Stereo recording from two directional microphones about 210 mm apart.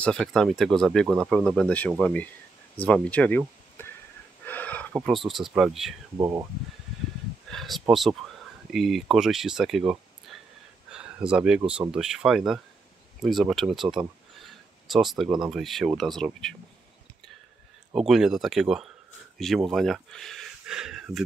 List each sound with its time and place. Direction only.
0.0 s speech: centre (ahead or behind)
4.5 s a sound: 10° left (ahead or behind)
4.9 s speech: centre (ahead or behind)
6.1 s speech: 15° right (ahead or behind)
7.5 s a sound: centre (ahead or behind)
7.9 s speech: centre (ahead or behind)
17.9 s speech: centre (ahead or behind)